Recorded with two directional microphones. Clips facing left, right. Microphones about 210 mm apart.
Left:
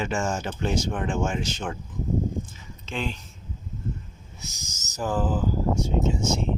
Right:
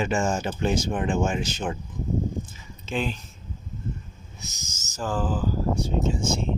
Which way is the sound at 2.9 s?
5° right (ahead or behind).